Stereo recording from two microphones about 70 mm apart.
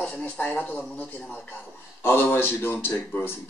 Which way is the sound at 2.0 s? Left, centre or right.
Left.